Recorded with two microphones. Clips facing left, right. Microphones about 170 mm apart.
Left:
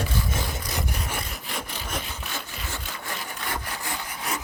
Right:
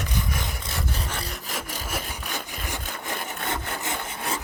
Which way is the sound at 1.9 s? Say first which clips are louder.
Right 1 dB; 15° right (ahead or behind).